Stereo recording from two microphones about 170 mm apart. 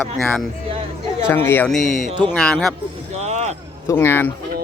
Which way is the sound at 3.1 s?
40° right (ahead or behind).